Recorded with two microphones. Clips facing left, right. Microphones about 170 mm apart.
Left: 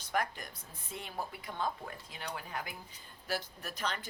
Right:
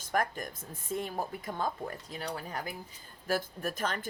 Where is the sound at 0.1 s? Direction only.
45° right (ahead or behind).